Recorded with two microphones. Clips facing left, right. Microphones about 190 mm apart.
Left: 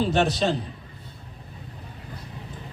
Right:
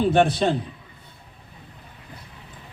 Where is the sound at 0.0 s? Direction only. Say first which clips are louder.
Right 3 dB; 55° right (ahead or behind).